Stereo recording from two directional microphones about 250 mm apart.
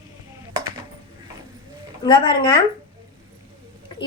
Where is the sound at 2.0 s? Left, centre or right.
Centre.